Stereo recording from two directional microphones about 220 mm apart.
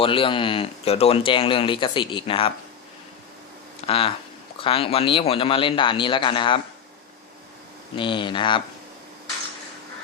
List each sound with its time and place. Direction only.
0.0 s speech: 25° left (ahead or behind)
3.8 s speech: 25° left (ahead or behind)
7.9 s speech: 20° left (ahead or behind)